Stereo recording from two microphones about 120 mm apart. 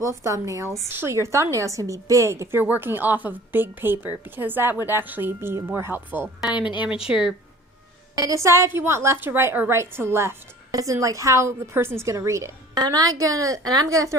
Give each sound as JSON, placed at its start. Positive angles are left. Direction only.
{"t": 0.0, "sound": "a woman's voice", "side_deg": -25}
{"t": 8.1, "sound": "a woman's voice", "side_deg": -30}